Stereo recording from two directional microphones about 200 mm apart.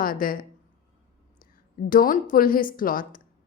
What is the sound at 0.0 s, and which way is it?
Speech, 45° left (ahead or behind).